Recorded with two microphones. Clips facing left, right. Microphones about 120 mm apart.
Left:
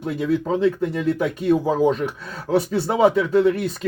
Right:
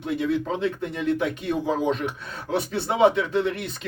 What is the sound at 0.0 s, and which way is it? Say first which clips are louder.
Speech: left 3 dB; 40° left (ahead or behind).